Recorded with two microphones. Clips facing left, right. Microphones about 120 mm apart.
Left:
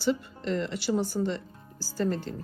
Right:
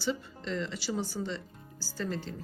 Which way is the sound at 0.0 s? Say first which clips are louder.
Left 6 dB; 55° left (ahead or behind).